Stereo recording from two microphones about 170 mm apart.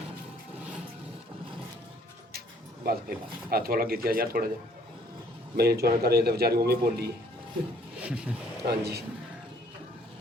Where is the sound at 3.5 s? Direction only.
60° right (ahead or behind).